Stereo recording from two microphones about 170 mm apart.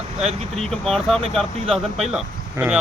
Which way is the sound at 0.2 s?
40° right (ahead or behind).